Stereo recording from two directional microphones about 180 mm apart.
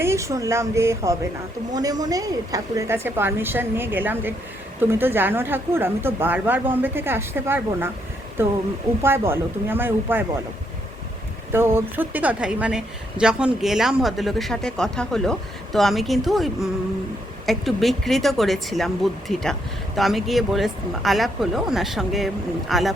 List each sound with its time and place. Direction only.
0.0 s a woman's voice: 15° right (ahead or behind)
11.5 s a woman's voice: 15° right (ahead or behind)